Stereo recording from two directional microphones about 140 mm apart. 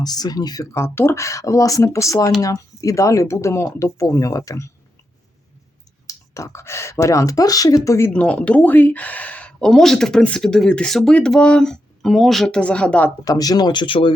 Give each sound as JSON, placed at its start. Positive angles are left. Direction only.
{"t": 0.0, "sound": "speech", "side_deg": 30}
{"t": 6.1, "sound": "speech", "side_deg": 20}
{"t": 13.2, "sound": "speech", "side_deg": 25}